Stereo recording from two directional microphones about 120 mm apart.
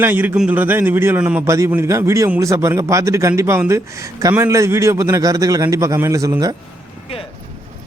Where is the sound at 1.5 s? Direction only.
25° right (ahead or behind).